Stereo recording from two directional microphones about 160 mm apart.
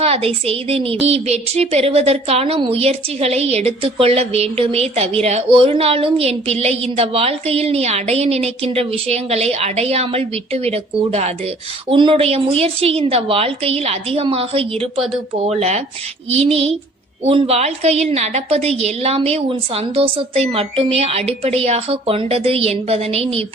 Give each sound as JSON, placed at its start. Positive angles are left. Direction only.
{"t": 0.0, "sound": "speech", "side_deg": -35}